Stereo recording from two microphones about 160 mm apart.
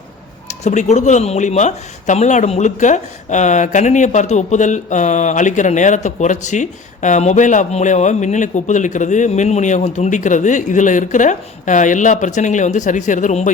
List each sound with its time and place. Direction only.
0.4 s speech: 45° left (ahead or behind)